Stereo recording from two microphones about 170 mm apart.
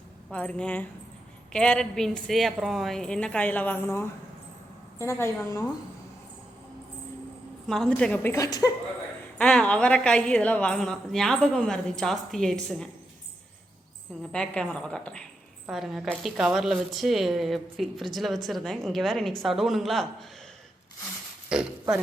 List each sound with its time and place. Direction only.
0.3 s a woman's voice: 5° left (ahead or behind)
7.7 s speech: 5° left (ahead or behind); by 8.7 s 20° left (ahead or behind)
9.4 s a woman's voice: 5° left (ahead or behind)
14.2 s a woman's voice: 5° left (ahead or behind)
21.5 s speech: 5° right (ahead or behind)